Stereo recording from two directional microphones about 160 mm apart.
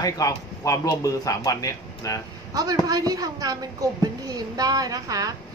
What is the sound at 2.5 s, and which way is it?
A woman's voice, 25° right (ahead or behind).